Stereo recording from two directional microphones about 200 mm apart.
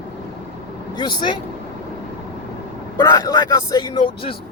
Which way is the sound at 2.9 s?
15° left (ahead or behind).